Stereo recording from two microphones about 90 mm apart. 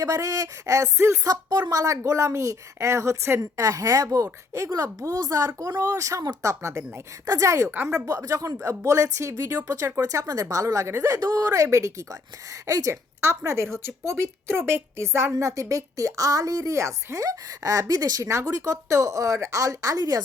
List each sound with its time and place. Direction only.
0.0 s a woman's voice: 40° right (ahead or behind)
1.3 s a woman's voice: 50° right (ahead or behind); by 3.4 s 30° right (ahead or behind)
3.4 s a woman's voice: 40° right (ahead or behind)
5.5 s a woman's voice: 30° right (ahead or behind)
7.7 s a woman's voice: 25° right (ahead or behind)
7.9 s a woman's voice: 35° right (ahead or behind)
12.9 s a woman's voice: 30° right (ahead or behind)